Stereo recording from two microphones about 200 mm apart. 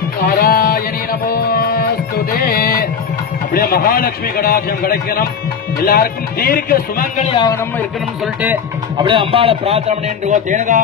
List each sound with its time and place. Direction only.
0.2 s music: 50° left (ahead or behind)
3.5 s a man's voice: 45° left (ahead or behind)
7.2 s speech: 25° left (ahead or behind)
8.9 s speech: 25° right (ahead or behind)